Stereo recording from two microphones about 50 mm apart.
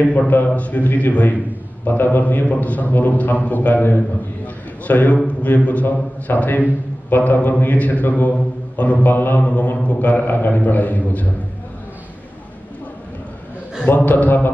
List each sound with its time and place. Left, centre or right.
0.6 s a man's voice: left
9.4 s mantra: left
9.8 s a man's voice: left
13.8 s a man's voice: left